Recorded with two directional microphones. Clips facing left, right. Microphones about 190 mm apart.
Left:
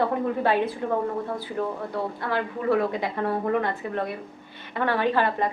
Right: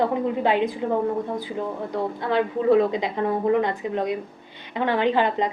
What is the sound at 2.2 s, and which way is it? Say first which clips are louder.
A woman's voice: right 5 dB; 20° right (ahead or behind).